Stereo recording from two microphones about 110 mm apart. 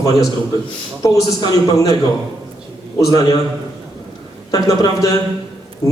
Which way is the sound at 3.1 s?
35° left (ahead or behind).